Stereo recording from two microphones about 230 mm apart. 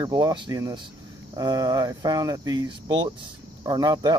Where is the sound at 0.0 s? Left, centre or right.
Centre.